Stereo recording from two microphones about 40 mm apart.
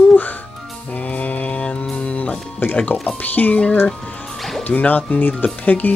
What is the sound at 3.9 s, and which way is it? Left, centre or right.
Music, centre.